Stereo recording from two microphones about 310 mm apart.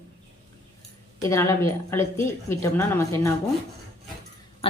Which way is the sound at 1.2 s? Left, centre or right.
Centre.